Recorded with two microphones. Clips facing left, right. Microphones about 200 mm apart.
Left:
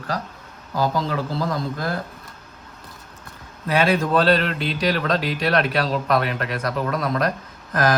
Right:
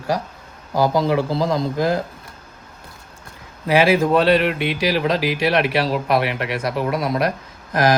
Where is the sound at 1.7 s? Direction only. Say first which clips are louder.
Right 7 dB; 15° right (ahead or behind).